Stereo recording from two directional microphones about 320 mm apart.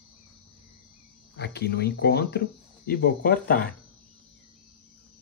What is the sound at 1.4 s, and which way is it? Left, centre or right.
Speech, left.